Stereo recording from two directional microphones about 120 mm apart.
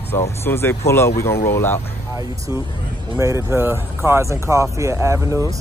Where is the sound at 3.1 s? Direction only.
25° right (ahead or behind).